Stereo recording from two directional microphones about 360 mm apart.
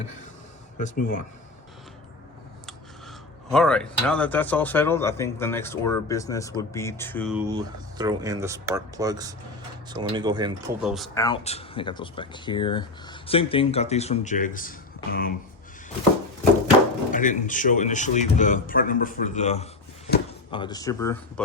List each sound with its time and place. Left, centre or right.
0.8 s a man's voice: left
3.5 s speech: centre
7.5 s speech: centre
10.8 s speech: centre; by 15.3 s left
17.1 s a man's voice: left